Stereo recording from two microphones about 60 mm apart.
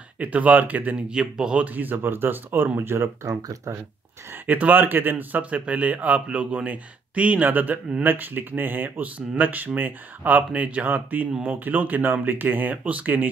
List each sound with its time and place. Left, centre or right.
0.2 s speech: right
1.1 s speech: centre
1.6 s speech: right
4.3 s speech: right